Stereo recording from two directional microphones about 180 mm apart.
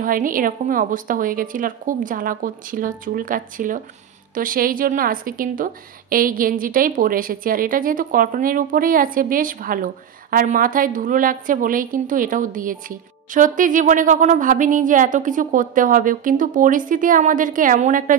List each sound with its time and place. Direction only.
0.0 s a woman's voice: 50° right (ahead or behind)